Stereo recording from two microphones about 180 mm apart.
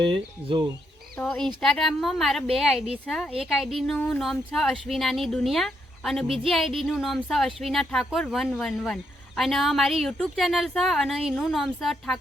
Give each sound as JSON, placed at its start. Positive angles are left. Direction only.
{"t": 0.0, "sound": "speech", "side_deg": -30}
{"t": 1.2, "sound": "speech", "side_deg": 5}